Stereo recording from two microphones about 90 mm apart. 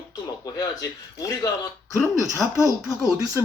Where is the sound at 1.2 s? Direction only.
40° left (ahead or behind).